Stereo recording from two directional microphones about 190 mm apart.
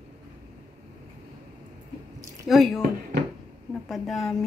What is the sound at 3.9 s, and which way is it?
Speech, centre (ahead or behind).